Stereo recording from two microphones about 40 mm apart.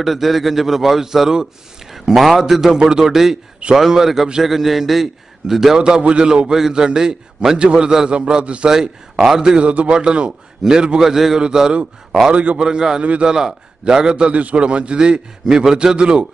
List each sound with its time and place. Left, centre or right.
0.0 s a man's voice: centre
5.8 s a man's voice: right
8.6 s a man's voice: centre
9.6 s a man's voice: right
11.0 s a man's voice: centre
12.3 s a man's voice: right
12.5 s a man's voice: centre
14.3 s a man's voice: right
15.4 s a man's voice: centre